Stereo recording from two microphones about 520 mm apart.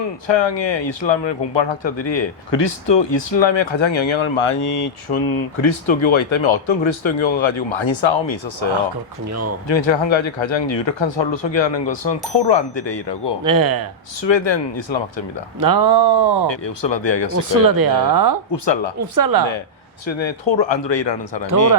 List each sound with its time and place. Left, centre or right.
0.3 s speech: left
9.3 s speech: right
9.6 s speech: left
13.4 s speech: right
14.2 s speech: left
15.6 s speech: right
16.5 s speech: left
17.5 s speech: right
18.5 s speech: left
18.9 s speech: right
20.1 s speech: left